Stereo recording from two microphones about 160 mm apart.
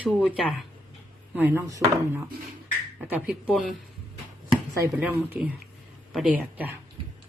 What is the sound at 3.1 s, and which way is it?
Speech, 5° right (ahead or behind).